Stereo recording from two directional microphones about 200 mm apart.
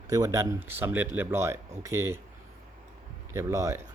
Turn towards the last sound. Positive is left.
turn(degrees=-15)  # may be behind; listen again after turning